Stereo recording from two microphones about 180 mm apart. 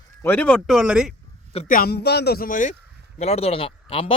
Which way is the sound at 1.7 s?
55° left (ahead or behind).